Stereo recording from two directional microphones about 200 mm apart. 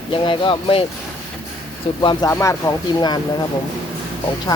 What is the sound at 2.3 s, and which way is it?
Speech, 15° left (ahead or behind).